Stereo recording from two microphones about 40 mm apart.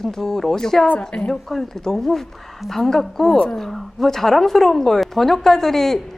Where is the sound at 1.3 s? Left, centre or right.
Centre.